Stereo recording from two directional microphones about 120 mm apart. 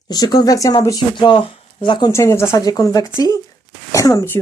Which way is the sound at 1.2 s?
45° left (ahead or behind).